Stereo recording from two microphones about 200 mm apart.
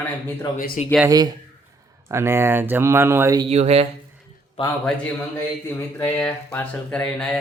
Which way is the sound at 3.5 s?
30° right (ahead or behind).